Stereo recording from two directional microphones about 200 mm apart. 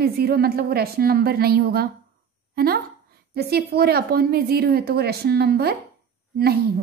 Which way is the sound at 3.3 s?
50° right (ahead or behind).